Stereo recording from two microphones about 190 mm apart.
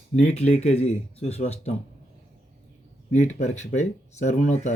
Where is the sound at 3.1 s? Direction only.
40° left (ahead or behind).